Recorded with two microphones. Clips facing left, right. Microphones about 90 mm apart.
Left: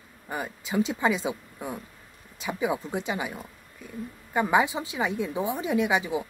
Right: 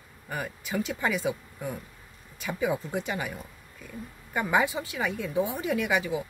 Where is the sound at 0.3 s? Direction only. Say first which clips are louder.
Left 1 dB; 20° left (ahead or behind).